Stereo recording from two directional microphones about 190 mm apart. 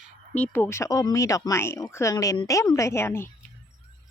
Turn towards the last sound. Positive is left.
turn(degrees=15)  # may be behind; listen again after turning